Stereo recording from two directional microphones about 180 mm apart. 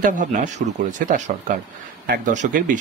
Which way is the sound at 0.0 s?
45° right (ahead or behind).